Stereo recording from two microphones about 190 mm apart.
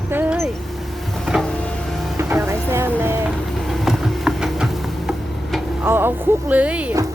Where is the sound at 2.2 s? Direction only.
15° right (ahead or behind).